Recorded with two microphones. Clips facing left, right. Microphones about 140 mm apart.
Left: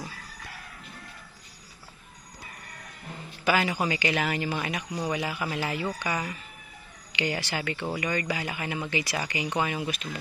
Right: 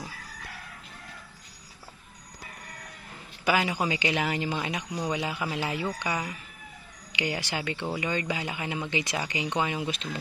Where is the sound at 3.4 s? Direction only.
15° right (ahead or behind).